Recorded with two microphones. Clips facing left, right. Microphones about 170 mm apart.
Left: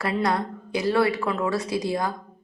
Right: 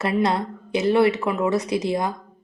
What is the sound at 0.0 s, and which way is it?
Speech, 20° right (ahead or behind).